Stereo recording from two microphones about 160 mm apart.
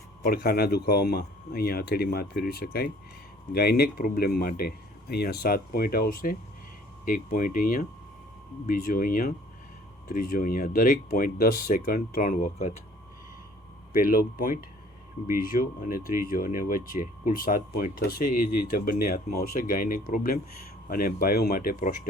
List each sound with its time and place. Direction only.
0.3 s speech: 70° left (ahead or behind)
13.9 s speech: 65° left (ahead or behind)